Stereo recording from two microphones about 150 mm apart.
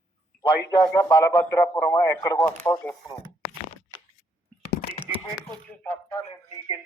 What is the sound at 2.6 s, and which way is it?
Speech, 10° left (ahead or behind).